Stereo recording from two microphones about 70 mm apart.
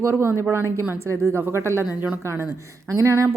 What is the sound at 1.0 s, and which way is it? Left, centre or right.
A woman's voice, right.